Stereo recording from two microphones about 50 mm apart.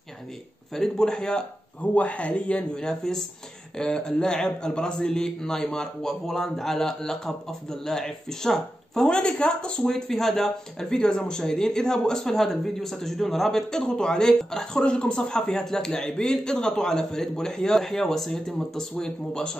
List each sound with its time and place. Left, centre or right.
0.7 s speech: centre
2.0 s speech: left